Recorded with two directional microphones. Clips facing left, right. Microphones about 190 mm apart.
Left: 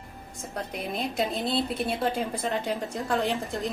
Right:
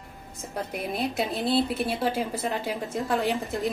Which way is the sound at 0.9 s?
5° right (ahead or behind).